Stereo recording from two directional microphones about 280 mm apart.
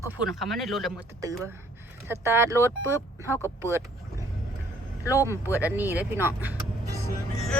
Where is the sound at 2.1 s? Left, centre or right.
Centre.